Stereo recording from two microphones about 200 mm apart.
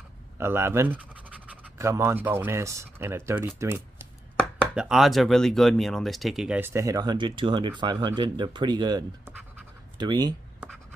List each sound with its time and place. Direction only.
0.4 s speech: 10° right (ahead or behind)